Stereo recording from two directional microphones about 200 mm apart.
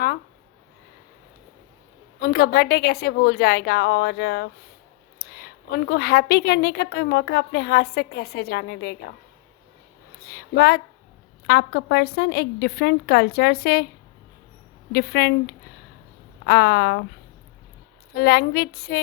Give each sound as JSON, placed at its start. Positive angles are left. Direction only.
{"t": 2.2, "sound": "a woman's voice", "side_deg": 50}
{"t": 10.2, "sound": "a woman's voice", "side_deg": 55}
{"t": 14.9, "sound": "a woman's voice", "side_deg": 55}
{"t": 16.5, "sound": "a woman's voice", "side_deg": 55}
{"t": 18.1, "sound": "a woman's voice", "side_deg": 55}